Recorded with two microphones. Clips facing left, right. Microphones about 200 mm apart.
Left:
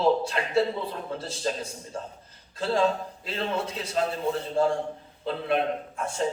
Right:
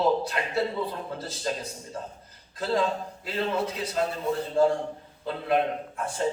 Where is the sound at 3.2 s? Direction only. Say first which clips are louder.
Right 2 dB; 25° left (ahead or behind).